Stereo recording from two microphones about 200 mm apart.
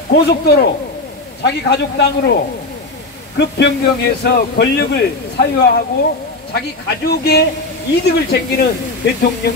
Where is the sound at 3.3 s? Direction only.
60° left (ahead or behind).